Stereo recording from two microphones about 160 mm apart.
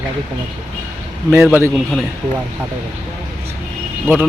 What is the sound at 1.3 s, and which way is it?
Speech, 10° right (ahead or behind).